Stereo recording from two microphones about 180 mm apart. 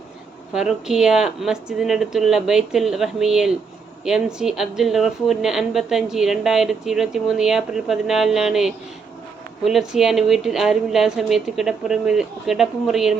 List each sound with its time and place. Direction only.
0.5 s a woman's voice: 5° right (ahead or behind)